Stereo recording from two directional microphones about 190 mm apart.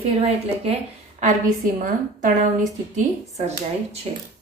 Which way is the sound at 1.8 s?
45° right (ahead or behind).